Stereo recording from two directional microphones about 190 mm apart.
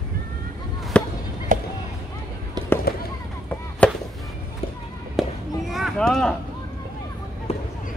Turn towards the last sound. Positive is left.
turn(degrees=30)  # may be behind; listen again after turning